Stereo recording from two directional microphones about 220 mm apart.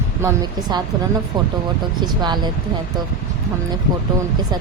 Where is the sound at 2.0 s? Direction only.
20° right (ahead or behind).